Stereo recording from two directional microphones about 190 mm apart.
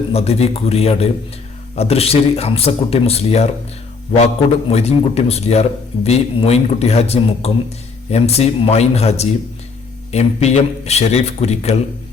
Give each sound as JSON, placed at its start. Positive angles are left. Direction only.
{"t": 0.1, "sound": "speech", "side_deg": 35}
{"t": 4.7, "sound": "speech", "side_deg": 35}